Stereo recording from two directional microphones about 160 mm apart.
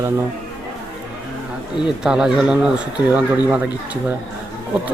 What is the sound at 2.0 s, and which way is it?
Speech, 5° right (ahead or behind).